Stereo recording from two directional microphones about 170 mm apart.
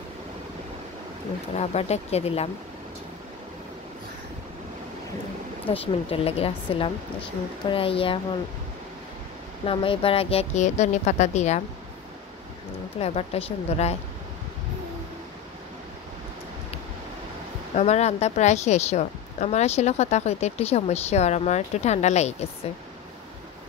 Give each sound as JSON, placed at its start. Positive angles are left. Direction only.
{"t": 1.6, "sound": "a woman's voice", "side_deg": 40}
{"t": 5.7, "sound": "a woman's voice", "side_deg": 35}
{"t": 9.7, "sound": "a woman's voice", "side_deg": 30}
{"t": 13.0, "sound": "a woman's voice", "side_deg": 35}
{"t": 17.7, "sound": "a woman's voice", "side_deg": 40}